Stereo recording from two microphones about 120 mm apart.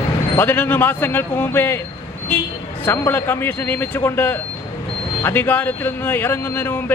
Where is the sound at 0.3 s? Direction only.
15° left (ahead or behind).